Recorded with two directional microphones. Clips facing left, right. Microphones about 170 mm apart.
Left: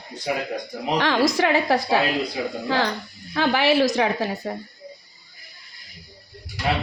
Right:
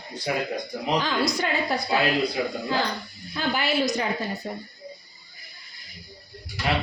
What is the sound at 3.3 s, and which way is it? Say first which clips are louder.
A woman's voice: left 6 dB; 85° left.